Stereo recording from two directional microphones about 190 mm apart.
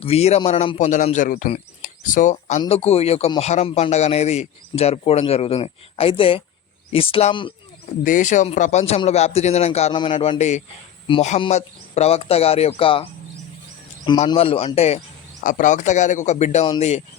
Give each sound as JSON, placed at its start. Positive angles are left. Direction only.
{"t": 0.0, "sound": "a man's voice", "side_deg": 35}
{"t": 8.0, "sound": "a man's voice", "side_deg": 40}
{"t": 14.3, "sound": "a man's voice", "side_deg": 30}